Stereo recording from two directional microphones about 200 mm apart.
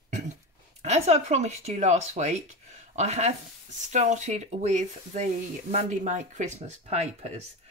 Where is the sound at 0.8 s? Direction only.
35° right (ahead or behind).